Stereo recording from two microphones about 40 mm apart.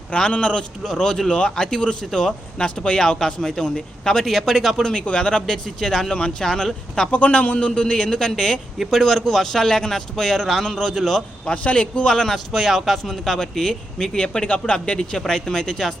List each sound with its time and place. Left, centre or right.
0.1 s a man's voice: left
0.9 s a man's voice: centre
2.0 s speech: centre
2.6 s speech: left
4.3 s speech: centre
4.8 s speech: centre
7.1 s a man's voice: left; by 11.2 s centre
11.5 s a man's voice: left
12.1 s speech: centre
14.4 s a man's voice: left; by 16.0 s centre